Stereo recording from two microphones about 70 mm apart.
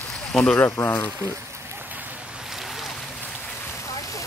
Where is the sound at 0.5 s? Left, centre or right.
Left.